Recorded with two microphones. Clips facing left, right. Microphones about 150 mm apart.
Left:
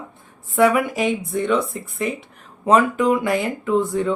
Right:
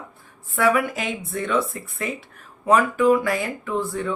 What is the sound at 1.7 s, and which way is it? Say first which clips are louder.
Speech: left 4 dB; 20° left (ahead or behind).